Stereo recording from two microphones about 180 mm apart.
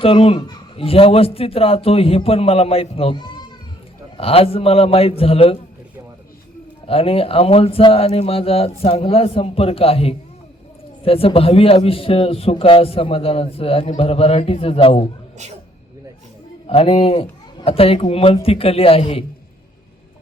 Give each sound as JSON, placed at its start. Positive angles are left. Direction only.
{"t": 0.0, "sound": "a man's voice", "side_deg": 30}
{"t": 6.8, "sound": "a man's voice", "side_deg": 30}
{"t": 16.6, "sound": "a man's voice", "side_deg": 30}